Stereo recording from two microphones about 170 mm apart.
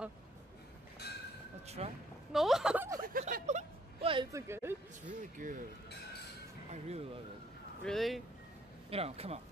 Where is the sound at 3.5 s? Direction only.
45° right (ahead or behind).